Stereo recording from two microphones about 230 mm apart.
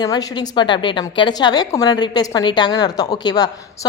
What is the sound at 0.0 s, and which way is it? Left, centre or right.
A woman's voice, centre.